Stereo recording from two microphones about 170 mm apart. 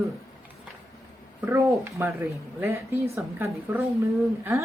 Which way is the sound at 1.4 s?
5° right (ahead or behind).